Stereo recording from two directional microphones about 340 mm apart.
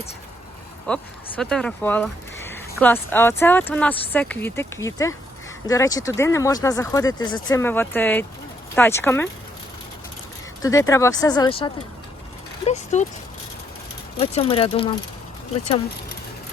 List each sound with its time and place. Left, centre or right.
0.9 s speech: centre
10.6 s speech: centre
14.2 s speech: centre